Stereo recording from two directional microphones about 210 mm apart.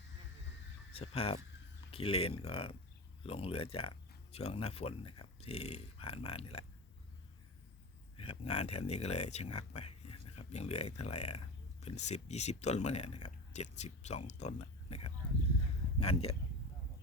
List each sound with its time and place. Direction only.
0.9 s speech: 30° left (ahead or behind)
8.1 s speech: 25° left (ahead or behind)